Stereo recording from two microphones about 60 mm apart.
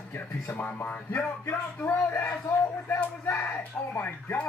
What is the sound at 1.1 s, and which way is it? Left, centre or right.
Speech, left.